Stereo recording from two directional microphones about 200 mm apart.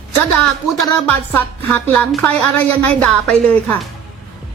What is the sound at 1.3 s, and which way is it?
A woman's voice, 10° left (ahead or behind).